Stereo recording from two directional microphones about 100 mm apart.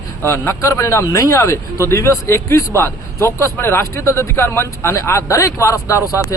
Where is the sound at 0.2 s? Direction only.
25° left (ahead or behind).